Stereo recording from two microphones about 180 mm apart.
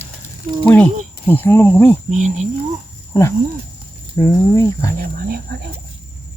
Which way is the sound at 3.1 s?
15° left (ahead or behind).